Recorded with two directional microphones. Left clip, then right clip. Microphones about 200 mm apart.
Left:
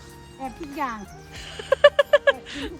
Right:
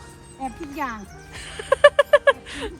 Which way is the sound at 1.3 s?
15° left (ahead or behind).